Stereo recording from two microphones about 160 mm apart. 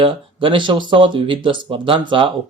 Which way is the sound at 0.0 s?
30° right (ahead or behind).